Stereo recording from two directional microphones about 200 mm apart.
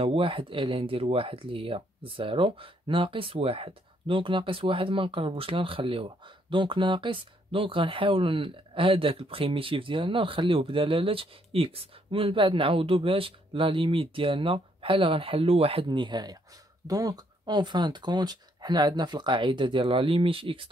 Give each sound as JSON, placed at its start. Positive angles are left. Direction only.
{"t": 0.0, "sound": "speech", "side_deg": -25}